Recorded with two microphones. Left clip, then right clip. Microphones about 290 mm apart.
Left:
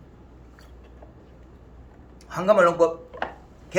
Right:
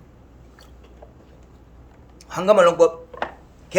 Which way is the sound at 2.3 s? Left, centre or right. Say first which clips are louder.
Right 3 dB; right.